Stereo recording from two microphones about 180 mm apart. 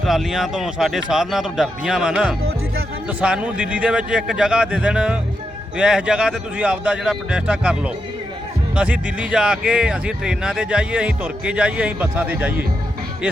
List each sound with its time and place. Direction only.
0.0 s speech: centre (ahead or behind)